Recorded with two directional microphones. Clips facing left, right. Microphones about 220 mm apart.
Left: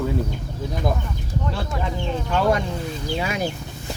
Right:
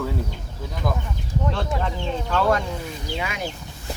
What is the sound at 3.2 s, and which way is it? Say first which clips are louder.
Speech: left 5 dB; 35° left (ahead or behind).